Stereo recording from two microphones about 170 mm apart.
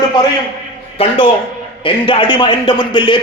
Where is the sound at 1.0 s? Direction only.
35° left (ahead or behind).